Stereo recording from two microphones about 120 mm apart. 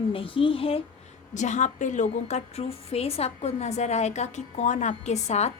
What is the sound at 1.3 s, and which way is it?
A woman's voice, 90° left.